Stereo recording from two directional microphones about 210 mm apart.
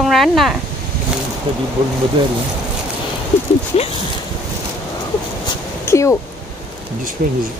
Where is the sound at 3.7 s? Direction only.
30° left (ahead or behind).